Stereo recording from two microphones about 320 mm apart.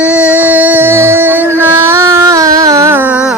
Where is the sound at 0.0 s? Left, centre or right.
Centre.